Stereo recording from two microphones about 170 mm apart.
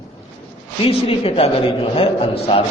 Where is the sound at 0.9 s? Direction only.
35° left (ahead or behind).